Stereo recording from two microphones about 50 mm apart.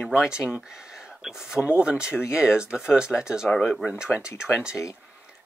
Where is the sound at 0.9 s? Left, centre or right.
Centre.